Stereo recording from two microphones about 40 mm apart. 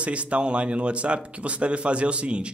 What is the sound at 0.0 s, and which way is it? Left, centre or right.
A man's voice, right.